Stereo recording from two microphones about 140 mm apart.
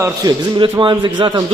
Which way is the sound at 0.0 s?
25° right (ahead or behind).